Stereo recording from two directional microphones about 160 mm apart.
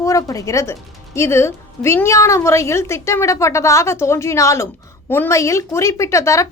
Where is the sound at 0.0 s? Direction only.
20° left (ahead or behind).